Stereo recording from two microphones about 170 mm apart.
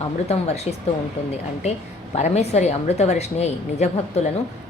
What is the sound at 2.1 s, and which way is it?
A woman's voice, 40° left (ahead or behind).